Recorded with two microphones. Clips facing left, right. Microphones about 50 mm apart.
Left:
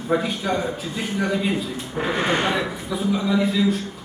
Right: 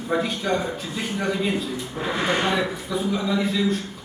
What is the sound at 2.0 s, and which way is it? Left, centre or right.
Speech, left.